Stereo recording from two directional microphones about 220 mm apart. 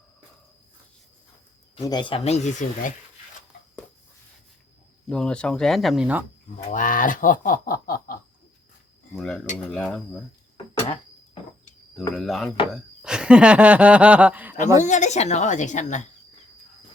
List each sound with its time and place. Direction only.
1.8 s speech: 20° left (ahead or behind)
5.0 s speech: 5° left (ahead or behind)
6.7 s speech: 35° left (ahead or behind)
9.1 s speech: 5° left (ahead or behind)
11.9 s speech: centre (ahead or behind)
14.8 s speech: 35° left (ahead or behind)